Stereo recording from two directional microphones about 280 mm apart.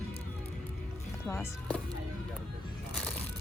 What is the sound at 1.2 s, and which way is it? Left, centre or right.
Speech, centre.